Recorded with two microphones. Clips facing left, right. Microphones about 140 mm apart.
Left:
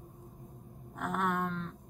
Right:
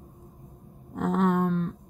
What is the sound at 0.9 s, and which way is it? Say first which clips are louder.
Speech: right 9 dB; 25° right (ahead or behind).